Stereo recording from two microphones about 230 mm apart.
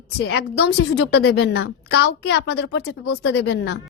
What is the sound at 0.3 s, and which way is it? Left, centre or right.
A woman's voice, left.